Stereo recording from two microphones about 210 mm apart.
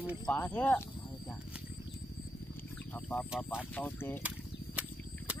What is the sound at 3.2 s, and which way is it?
Speech, centre (ahead or behind).